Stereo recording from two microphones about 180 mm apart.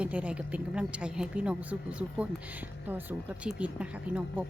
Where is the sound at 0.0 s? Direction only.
5° right (ahead or behind).